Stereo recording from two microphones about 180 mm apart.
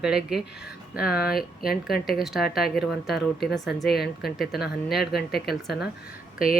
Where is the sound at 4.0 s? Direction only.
60° left (ahead or behind).